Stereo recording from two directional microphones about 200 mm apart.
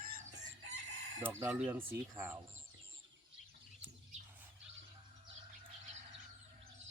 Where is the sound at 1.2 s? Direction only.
10° right (ahead or behind).